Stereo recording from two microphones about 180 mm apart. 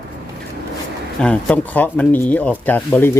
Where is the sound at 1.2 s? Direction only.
5° left (ahead or behind).